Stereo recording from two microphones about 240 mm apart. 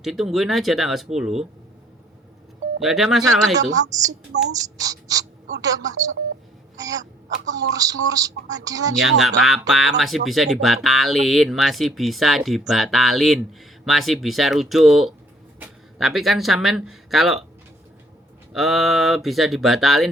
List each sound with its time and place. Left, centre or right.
0.0 s speech: centre
2.8 s speech: centre
4.3 s speech: right
4.8 s speech: centre
9.0 s speech: centre
18.5 s speech: centre